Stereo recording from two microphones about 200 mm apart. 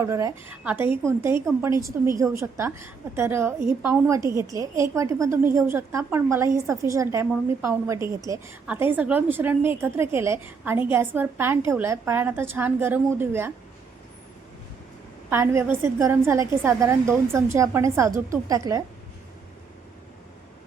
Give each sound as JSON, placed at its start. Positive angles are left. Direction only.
{"t": 0.0, "sound": "a woman's voice", "side_deg": -15}
{"t": 15.3, "sound": "a woman's voice", "side_deg": -10}